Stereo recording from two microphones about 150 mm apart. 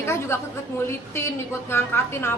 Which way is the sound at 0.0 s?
15° left (ahead or behind).